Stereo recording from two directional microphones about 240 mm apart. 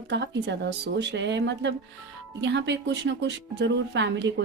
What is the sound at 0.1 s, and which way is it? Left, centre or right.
Speech, right.